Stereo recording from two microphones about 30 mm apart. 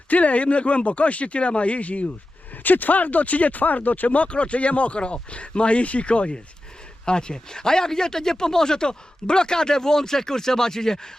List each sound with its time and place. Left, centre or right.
0.1 s speech: left
2.6 s speech: left
7.0 s speech: left